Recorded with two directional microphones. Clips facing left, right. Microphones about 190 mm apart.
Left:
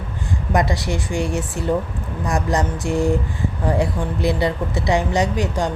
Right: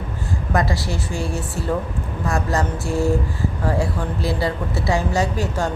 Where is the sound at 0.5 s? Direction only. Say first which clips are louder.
Left 2 dB; 20° left (ahead or behind).